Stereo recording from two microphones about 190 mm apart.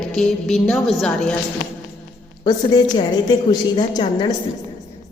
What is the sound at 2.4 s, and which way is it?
A woman's voice, 25° left (ahead or behind).